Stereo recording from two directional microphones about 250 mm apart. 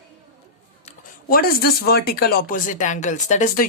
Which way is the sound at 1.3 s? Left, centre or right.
Left.